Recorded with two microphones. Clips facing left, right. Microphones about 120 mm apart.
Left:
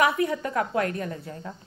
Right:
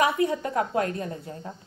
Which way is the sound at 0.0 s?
25° right (ahead or behind).